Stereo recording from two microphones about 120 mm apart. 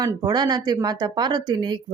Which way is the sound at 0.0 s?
35° right (ahead or behind).